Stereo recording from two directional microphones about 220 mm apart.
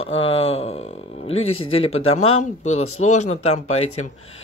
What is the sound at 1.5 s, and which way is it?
Speech, 70° left (ahead or behind).